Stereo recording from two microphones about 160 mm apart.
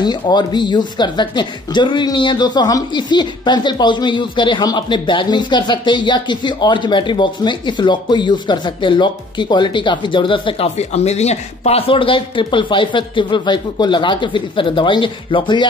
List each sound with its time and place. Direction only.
0.0 s speech: 25° left (ahead or behind)